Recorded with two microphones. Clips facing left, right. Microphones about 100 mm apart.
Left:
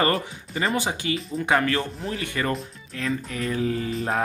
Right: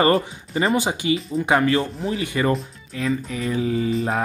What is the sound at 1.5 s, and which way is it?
Speech, 10° right (ahead or behind).